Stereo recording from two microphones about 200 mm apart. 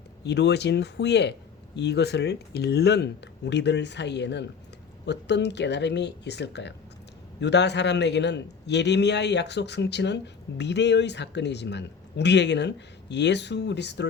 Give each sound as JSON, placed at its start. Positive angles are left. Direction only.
{"t": 0.3, "sound": "speech", "side_deg": 55}